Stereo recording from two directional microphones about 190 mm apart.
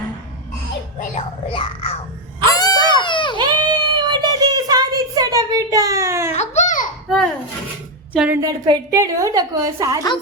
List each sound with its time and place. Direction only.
1.5 s speech: 30° left (ahead or behind)
2.5 s a sound: 20° left (ahead or behind)
3.0 s baby cry: 25° left (ahead or behind)
3.3 s child singing: 25° right (ahead or behind)
6.3 s a sound: 35° left (ahead or behind)
7.1 s a child's voice: 5° left (ahead or behind)
8.4 s a woman's voice: 20° right (ahead or behind)